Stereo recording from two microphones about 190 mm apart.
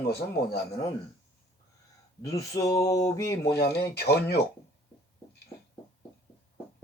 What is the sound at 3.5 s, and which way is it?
Speech, 55° left (ahead or behind).